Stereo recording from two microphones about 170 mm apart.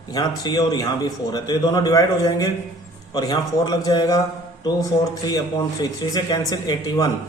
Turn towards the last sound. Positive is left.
turn(degrees=25)  # may be behind; listen again after turning